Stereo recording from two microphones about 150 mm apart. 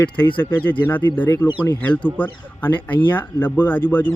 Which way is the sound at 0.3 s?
10° left (ahead or behind).